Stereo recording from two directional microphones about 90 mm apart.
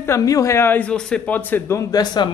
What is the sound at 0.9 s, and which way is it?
Speech, 10° left (ahead or behind).